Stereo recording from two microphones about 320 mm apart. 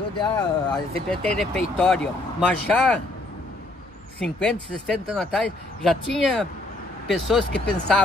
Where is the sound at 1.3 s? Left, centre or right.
Centre.